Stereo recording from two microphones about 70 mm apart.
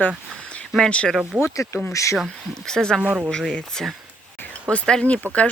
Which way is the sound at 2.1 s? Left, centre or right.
Centre.